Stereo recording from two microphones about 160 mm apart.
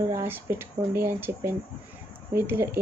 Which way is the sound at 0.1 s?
15° right (ahead or behind).